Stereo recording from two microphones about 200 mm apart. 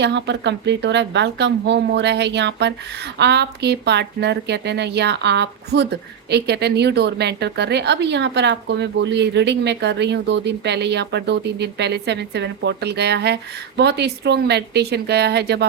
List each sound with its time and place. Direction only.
0.0 s a woman's voice: 60° right (ahead or behind)